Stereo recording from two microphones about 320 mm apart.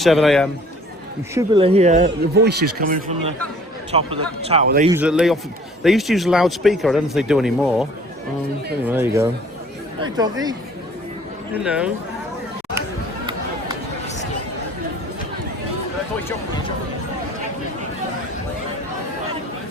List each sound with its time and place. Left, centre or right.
0.0 s speech: centre
1.3 s speech: centre
2.0 s a man's voice: right
4.9 s speech: centre
11.5 s speech: centre